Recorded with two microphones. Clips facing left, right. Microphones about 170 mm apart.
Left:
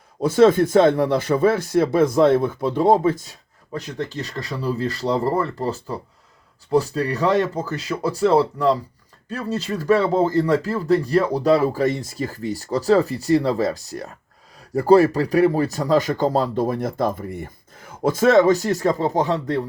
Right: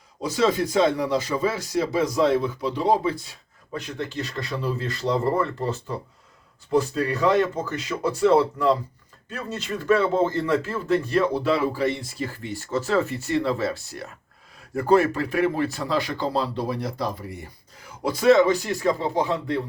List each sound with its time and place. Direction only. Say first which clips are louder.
0.2 s speech: left 8 dB; 55° left (ahead or behind)